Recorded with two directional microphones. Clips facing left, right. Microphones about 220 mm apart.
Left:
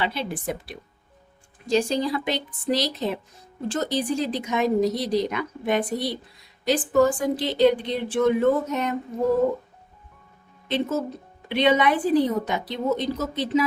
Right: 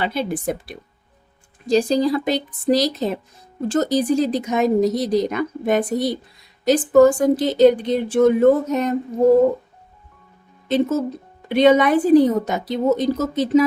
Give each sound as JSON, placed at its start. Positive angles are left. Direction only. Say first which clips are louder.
{"t": 0.0, "sound": "speech", "louder": "right 5 dB", "side_deg": -45}
{"t": 10.7, "sound": "speech", "louder": "right 6 dB", "side_deg": -45}